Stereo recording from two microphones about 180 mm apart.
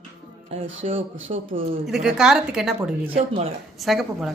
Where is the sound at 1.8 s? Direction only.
Centre (ahead or behind).